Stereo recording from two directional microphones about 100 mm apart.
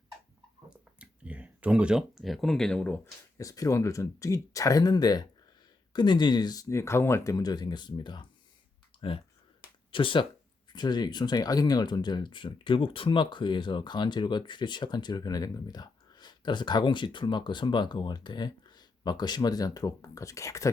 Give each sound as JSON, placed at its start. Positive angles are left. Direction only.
{"t": 0.7, "sound": "a sound", "side_deg": -10}
{"t": 3.3, "sound": "speech", "side_deg": 35}
{"t": 7.3, "sound": "speech", "side_deg": 40}
{"t": 9.0, "sound": "speech", "side_deg": 65}
{"t": 10.7, "sound": "speech", "side_deg": 45}